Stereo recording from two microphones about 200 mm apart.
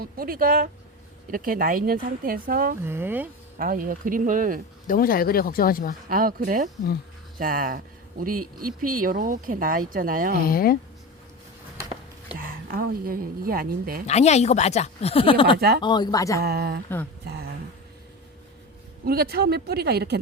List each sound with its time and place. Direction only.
0.0 s speech: 45° right (ahead or behind)
2.8 s speech: 10° right (ahead or behind)
3.6 s speech: 45° right (ahead or behind)
4.9 s speech: 45° left (ahead or behind)
6.1 s speech: 45° right (ahead or behind)
8.9 s speech: 45° right (ahead or behind)
10.4 s speech: 45° left (ahead or behind)
12.4 s a woman's voice: 50° right (ahead or behind)
14.1 s speech: 35° left (ahead or behind)
15.5 s speech: 50° right (ahead or behind)
15.8 s speech: 20° left (ahead or behind)
16.4 s speech: 50° right (ahead or behind)
19.0 s speech: 50° right (ahead or behind)